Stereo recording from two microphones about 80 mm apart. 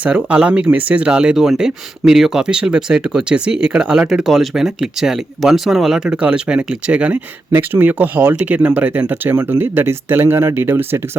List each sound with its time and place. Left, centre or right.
0.0 s speech: centre